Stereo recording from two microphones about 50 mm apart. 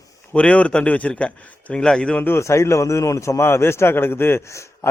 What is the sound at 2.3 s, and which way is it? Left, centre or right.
A man's voice, left.